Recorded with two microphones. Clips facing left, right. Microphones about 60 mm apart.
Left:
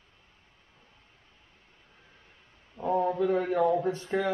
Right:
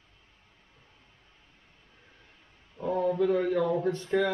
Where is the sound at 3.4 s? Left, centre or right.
Left.